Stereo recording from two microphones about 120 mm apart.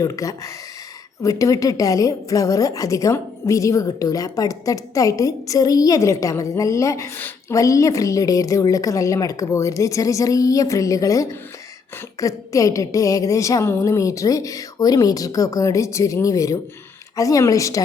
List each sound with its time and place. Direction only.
0.0 s a woman's voice: 25° left (ahead or behind)